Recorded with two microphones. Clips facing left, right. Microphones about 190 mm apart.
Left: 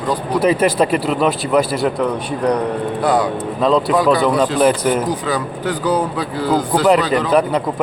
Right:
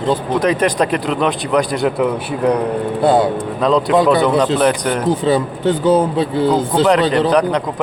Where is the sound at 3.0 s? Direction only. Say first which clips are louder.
Right 4 dB; 25° right (ahead or behind).